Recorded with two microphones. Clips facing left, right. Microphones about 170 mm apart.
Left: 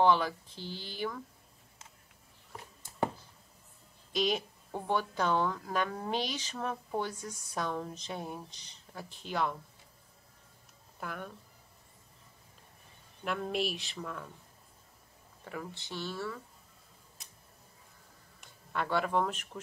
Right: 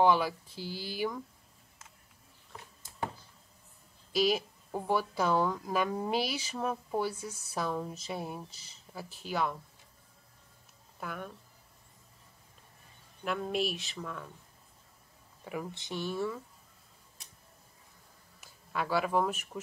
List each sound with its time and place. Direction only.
0.0 s a woman's voice: 10° right (ahead or behind)
4.1 s a woman's voice: 5° right (ahead or behind)
11.0 s speech: centre (ahead or behind)
13.2 s speech: centre (ahead or behind)
15.4 s a woman's voice: 15° right (ahead or behind)
18.4 s speech: 5° right (ahead or behind)